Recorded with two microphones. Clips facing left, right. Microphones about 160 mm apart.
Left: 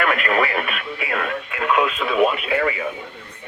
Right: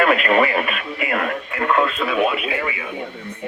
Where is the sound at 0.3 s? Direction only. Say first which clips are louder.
Right 3 dB; 5° right (ahead or behind).